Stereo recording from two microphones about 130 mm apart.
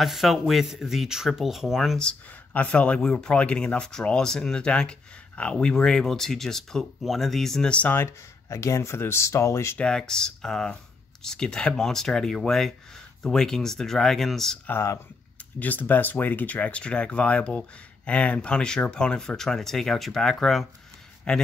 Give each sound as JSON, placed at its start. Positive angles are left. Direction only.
{"t": 0.0, "sound": "speech", "side_deg": 0}
{"t": 9.8, "sound": "speech", "side_deg": 5}
{"t": 14.7, "sound": "speech", "side_deg": 20}